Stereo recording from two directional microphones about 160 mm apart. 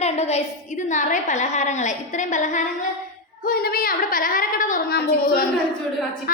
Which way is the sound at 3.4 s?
70° left (ahead or behind).